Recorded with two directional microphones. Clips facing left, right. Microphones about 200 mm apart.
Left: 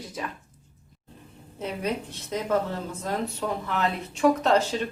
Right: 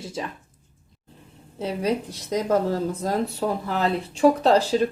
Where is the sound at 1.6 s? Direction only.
35° right (ahead or behind).